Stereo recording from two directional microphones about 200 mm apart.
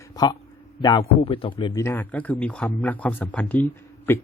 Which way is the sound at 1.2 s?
25° left (ahead or behind).